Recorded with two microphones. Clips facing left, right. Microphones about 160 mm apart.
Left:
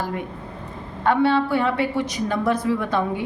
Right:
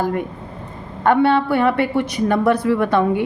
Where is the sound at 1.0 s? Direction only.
60° right (ahead or behind).